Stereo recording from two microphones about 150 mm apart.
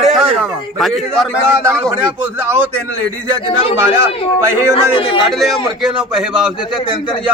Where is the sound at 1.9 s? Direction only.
15° right (ahead or behind).